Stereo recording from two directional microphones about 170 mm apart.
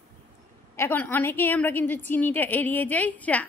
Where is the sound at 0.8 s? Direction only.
15° left (ahead or behind).